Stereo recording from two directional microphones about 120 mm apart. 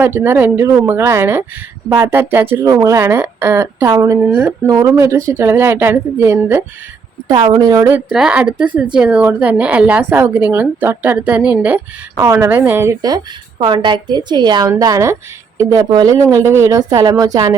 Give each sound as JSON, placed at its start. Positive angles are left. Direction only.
{"t": 0.0, "sound": "a woman's voice", "side_deg": -15}
{"t": 4.2, "sound": "speech", "side_deg": -15}
{"t": 4.6, "sound": "a woman's voice", "side_deg": -30}
{"t": 7.3, "sound": "a woman's voice", "side_deg": -40}
{"t": 8.1, "sound": "speech", "side_deg": -5}
{"t": 12.1, "sound": "a woman's voice", "side_deg": -25}
{"t": 13.0, "sound": "a woman's voice", "side_deg": -35}